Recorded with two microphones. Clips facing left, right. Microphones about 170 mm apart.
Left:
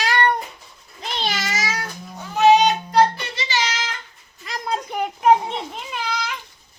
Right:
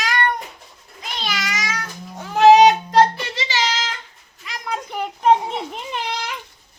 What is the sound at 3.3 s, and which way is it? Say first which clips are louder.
Music: right 2 dB; 90° right.